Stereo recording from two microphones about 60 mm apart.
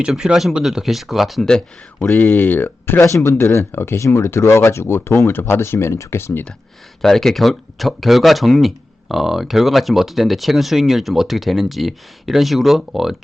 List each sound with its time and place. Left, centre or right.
0.2 s speech: centre
0.6 s speech: centre
1.5 s speech: centre
2.1 s speech: left
3.4 s speech: left
4.0 s speech: left
7.0 s speech: centre